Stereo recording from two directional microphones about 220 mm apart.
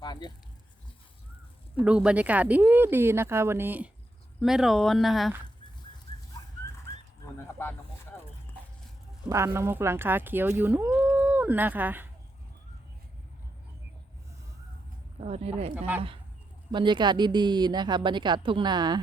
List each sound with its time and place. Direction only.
0.0 s a sound: 20° left (ahead or behind)
1.8 s speech: 5° right (ahead or behind)
7.3 s speech: 10° left (ahead or behind)
9.3 s speech: 10° right (ahead or behind)
15.2 s speech: 25° right (ahead or behind)
16.7 s speech: 20° right (ahead or behind)